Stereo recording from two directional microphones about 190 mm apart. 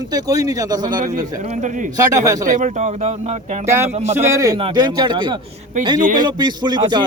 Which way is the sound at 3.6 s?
15° right (ahead or behind).